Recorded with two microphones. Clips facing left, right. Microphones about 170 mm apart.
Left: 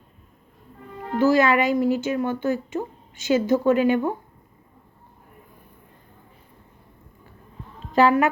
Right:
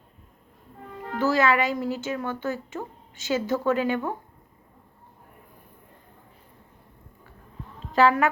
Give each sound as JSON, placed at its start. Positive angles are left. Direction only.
{"t": 1.2, "sound": "speech", "side_deg": 15}
{"t": 7.9, "sound": "speech", "side_deg": 15}